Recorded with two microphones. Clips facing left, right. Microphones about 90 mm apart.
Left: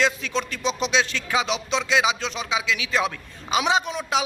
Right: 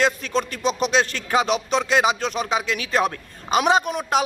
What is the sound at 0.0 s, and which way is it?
Speech, 45° right (ahead or behind).